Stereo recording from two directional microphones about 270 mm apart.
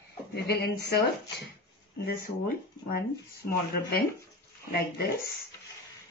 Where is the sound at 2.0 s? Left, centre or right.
Left.